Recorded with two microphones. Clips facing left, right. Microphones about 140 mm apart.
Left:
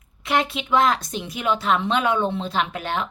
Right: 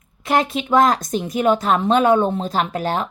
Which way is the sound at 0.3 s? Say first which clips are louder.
Right 4 dB; 45° right (ahead or behind).